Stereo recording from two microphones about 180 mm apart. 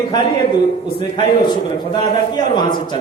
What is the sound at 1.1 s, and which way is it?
Speech, 25° left (ahead or behind).